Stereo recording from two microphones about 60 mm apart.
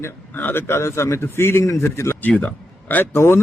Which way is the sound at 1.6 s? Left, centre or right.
Left.